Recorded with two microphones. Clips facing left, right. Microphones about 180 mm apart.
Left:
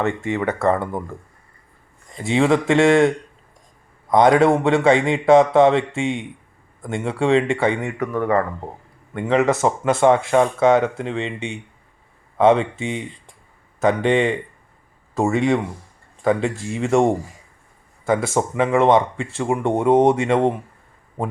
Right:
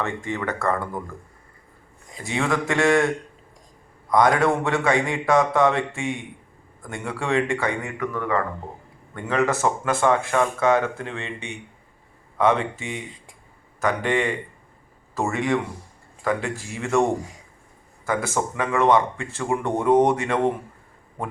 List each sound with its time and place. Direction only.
0.3 s speech: 20° left (ahead or behind)
2.2 s speech: 25° left (ahead or behind)
4.1 s speech: 25° left (ahead or behind)
7.9 s speech: 40° left (ahead or behind)
9.1 s speech: 20° left (ahead or behind)